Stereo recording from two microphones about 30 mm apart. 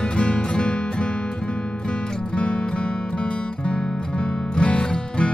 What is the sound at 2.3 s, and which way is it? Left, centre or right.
Music, left.